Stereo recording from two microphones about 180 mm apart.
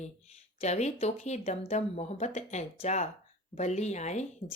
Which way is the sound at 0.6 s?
40° left (ahead or behind).